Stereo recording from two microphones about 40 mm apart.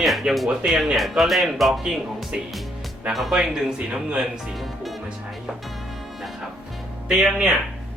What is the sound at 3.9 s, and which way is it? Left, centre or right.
Speech, right.